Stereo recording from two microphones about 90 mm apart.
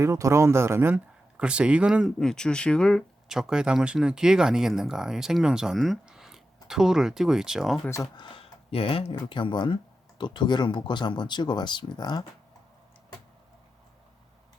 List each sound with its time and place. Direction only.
0.0 s speech: 35° right (ahead or behind)
0.9 s speech: 10° right (ahead or behind)
2.0 s speech: 5° left (ahead or behind)
3.2 s speech: 5° right (ahead or behind)
8.1 s speech: 75° left (ahead or behind)
9.1 s speech: 60° left (ahead or behind)